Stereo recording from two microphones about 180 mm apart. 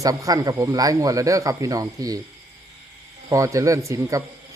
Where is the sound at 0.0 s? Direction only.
20° right (ahead or behind).